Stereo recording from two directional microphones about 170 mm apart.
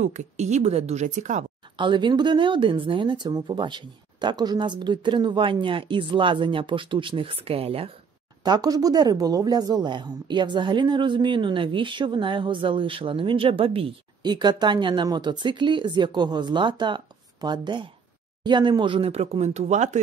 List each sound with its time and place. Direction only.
0.0 s a woman's voice: 45° right (ahead or behind)
1.8 s speech: 30° right (ahead or behind)
8.5 s speech: 20° right (ahead or behind); by 20.0 s 45° right (ahead or behind)